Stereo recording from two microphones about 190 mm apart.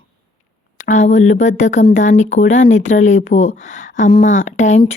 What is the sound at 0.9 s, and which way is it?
Speech, 40° left (ahead or behind).